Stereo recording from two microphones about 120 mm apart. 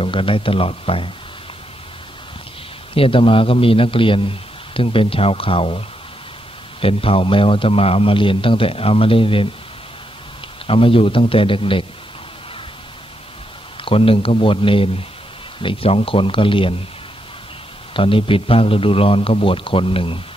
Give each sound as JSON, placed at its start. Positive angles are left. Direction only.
{"t": 0.0, "sound": "a man's voice", "side_deg": 50}
{"t": 2.9, "sound": "a man's voice", "side_deg": 50}
{"t": 10.7, "sound": "a man's voice", "side_deg": 50}
{"t": 13.8, "sound": "a man's voice", "side_deg": 50}
{"t": 17.9, "sound": "a man's voice", "side_deg": 45}